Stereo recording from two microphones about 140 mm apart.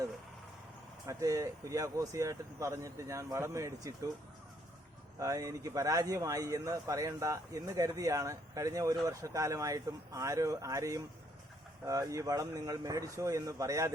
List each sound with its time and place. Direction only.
1.0 s speech: 25° right (ahead or behind)
5.2 s speech: 25° right (ahead or behind)